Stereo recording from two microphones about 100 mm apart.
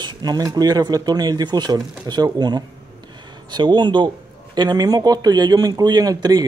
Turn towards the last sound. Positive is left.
turn(degrees=-45)  # may be behind; listen again after turning